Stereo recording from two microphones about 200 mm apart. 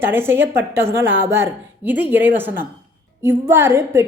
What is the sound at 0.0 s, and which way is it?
A woman's voice, 10° right (ahead or behind).